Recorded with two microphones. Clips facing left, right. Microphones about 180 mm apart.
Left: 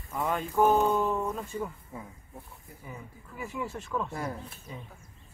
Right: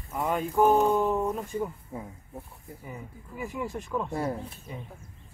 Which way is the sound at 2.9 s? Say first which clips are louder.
Right 2 dB; 10° right (ahead or behind).